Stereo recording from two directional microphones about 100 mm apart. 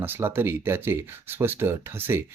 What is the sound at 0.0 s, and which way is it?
Speech, 25° right (ahead or behind).